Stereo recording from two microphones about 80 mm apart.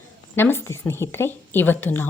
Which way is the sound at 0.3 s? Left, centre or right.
Left.